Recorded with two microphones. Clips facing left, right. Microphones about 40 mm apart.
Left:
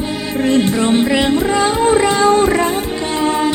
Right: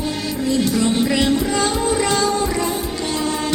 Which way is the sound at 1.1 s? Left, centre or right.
Left.